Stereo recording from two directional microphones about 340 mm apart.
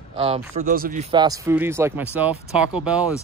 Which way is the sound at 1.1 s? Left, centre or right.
Centre.